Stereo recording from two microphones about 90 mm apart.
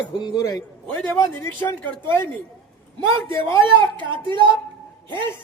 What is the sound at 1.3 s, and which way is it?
Speech, 25° left (ahead or behind).